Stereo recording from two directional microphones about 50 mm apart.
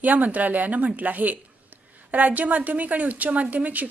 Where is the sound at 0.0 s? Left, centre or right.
Right.